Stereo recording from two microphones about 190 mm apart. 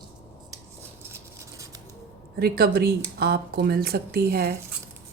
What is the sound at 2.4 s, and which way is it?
A woman's voice, 55° right (ahead or behind).